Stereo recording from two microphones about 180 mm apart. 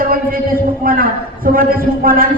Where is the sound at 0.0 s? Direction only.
50° right (ahead or behind).